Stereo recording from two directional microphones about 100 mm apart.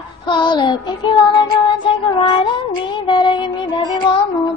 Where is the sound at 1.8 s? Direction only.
55° left (ahead or behind).